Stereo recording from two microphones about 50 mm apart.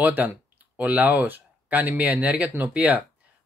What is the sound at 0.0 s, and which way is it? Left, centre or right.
Speech, right.